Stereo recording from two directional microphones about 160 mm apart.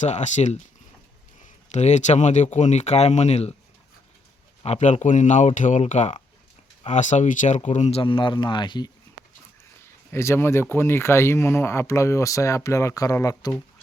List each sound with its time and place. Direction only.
0.0 s speech: 45° left (ahead or behind)
1.7 s speech: 45° left (ahead or behind)
4.6 s speech: 45° left (ahead or behind); by 8.9 s 30° left (ahead or behind)
10.1 s speech: 15° left (ahead or behind)